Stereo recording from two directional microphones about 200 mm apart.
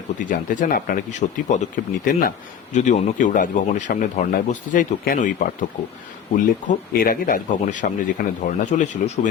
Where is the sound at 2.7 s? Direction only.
35° left (ahead or behind).